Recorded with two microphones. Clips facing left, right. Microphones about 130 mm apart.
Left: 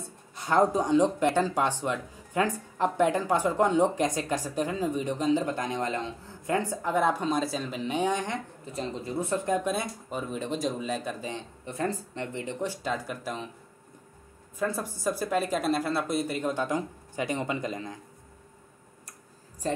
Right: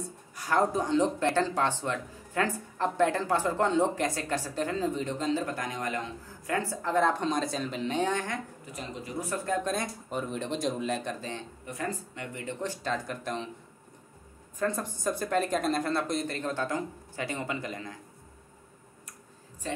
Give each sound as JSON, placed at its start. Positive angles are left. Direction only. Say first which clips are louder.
{"t": 0.4, "sound": "speech", "louder": "left 3 dB", "side_deg": 20}
{"t": 8.7, "sound": "speech", "louder": "left 5 dB", "side_deg": 30}
{"t": 9.7, "sound": "speech", "louder": "left 2 dB", "side_deg": 5}
{"t": 11.6, "sound": "speech", "louder": "left 5 dB", "side_deg": 30}
{"t": 12.5, "sound": "speech", "louder": "even", "side_deg": 10}
{"t": 14.6, "sound": "speech", "louder": "left 1 dB", "side_deg": 10}
{"t": 19.6, "sound": "a woman's voice", "louder": "left 5 dB", "side_deg": 40}